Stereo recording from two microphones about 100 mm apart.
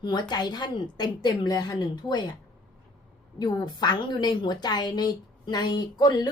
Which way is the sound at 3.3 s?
45° left (ahead or behind).